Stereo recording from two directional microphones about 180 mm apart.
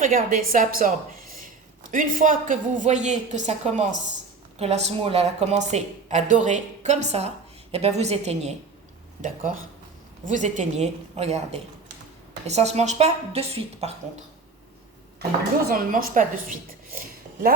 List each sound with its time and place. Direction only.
0.0 s a woman's voice: 50° right (ahead or behind)
15.7 s a woman's voice: 50° right (ahead or behind)